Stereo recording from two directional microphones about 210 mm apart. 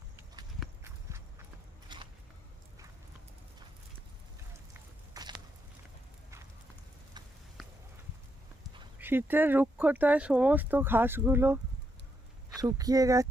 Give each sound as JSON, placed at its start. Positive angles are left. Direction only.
{"t": 1.9, "sound": "biting", "side_deg": -20}
{"t": 5.1, "sound": "a sound", "side_deg": -20}
{"t": 9.0, "sound": "speech", "side_deg": -10}